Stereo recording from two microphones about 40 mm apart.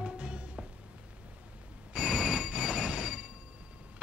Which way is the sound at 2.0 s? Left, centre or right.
Centre.